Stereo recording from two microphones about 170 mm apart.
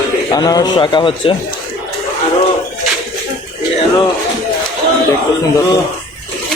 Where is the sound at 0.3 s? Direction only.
25° left (ahead or behind).